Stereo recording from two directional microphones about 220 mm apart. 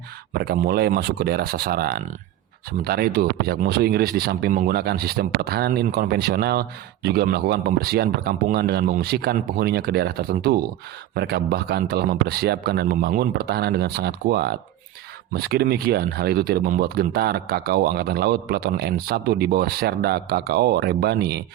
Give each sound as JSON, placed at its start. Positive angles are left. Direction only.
{"t": 0.3, "sound": "speech", "side_deg": -45}